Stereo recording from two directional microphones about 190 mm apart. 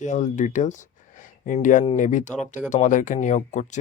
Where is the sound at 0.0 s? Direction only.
40° left (ahead or behind).